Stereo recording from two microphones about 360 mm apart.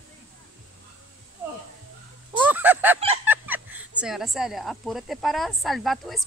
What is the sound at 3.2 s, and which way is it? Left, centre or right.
Speech, centre.